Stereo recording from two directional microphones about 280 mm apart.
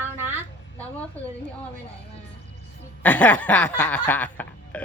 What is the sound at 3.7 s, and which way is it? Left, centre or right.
Snicker, centre.